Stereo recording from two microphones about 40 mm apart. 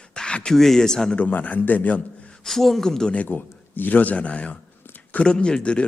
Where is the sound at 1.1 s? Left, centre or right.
Left.